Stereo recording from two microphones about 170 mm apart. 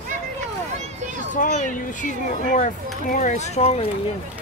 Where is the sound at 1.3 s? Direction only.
50° left (ahead or behind).